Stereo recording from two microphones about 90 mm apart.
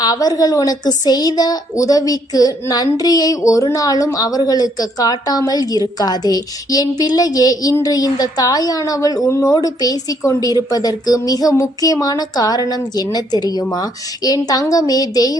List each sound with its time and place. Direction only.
0.0 s a woman's voice: 45° left (ahead or behind)
9.6 s a woman's voice: 45° left (ahead or behind)